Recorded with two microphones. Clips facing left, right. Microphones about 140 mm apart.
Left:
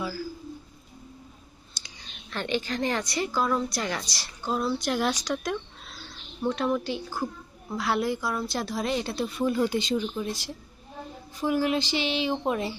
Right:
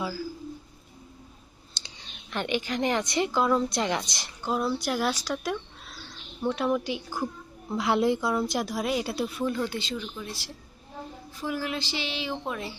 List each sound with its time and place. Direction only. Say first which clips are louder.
1.8 s clicking: right 3 dB; 30° right (ahead or behind)
2.3 s a woman's voice: even; 15° right (ahead or behind)
9.5 s speech: left 5 dB; 15° left (ahead or behind)